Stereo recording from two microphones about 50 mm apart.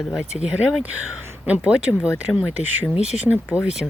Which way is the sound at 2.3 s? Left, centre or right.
Centre.